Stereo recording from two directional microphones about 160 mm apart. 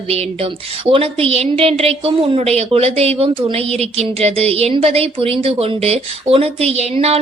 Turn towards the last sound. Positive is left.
turn(degrees=-40)  # may be behind; listen again after turning